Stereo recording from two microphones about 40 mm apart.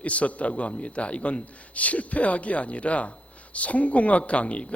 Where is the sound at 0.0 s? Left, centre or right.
Left.